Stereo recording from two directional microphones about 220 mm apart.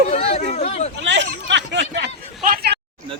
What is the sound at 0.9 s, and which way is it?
Speech, 55° right (ahead or behind).